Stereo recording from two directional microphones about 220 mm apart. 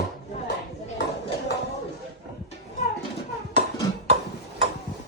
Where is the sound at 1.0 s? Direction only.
55° left (ahead or behind).